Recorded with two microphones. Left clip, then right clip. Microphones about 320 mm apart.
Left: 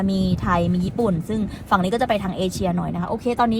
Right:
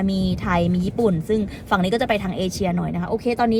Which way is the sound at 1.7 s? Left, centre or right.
Right.